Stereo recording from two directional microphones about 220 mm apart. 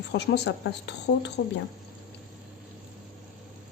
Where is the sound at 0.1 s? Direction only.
50° left (ahead or behind).